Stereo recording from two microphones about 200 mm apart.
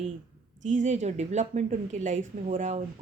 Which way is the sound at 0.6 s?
35° right (ahead or behind).